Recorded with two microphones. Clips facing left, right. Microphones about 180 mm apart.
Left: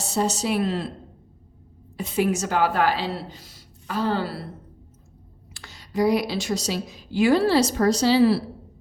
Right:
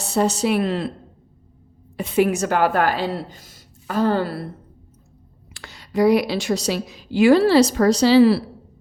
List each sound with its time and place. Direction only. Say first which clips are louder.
0.0 s speech: right 5 dB; 60° right (ahead or behind)
2.0 s a woman's voice: right 5 dB; 60° right (ahead or behind)
5.5 s a woman's voice: right 4 dB; 65° right (ahead or behind); by 8.4 s 85° right